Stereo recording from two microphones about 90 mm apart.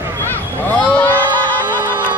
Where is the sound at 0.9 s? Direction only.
20° left (ahead or behind).